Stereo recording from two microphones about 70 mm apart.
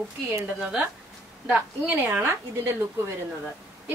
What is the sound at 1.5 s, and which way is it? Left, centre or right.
A woman's voice, right.